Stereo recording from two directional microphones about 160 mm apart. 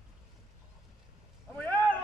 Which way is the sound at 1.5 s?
10° left (ahead or behind).